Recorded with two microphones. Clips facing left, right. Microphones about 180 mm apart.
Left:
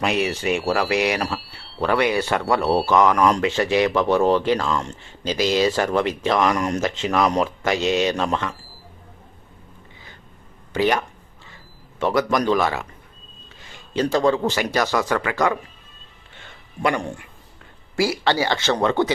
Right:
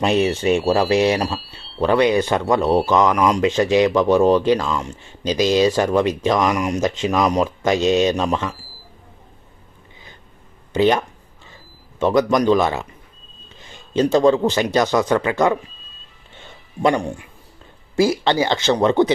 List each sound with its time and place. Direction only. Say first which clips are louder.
0.0 s speech: right 5 dB; 25° right (ahead or behind)
10.8 s speech: right 4 dB; 20° right (ahead or behind)
16.8 s speech: right 4 dB; 20° right (ahead or behind)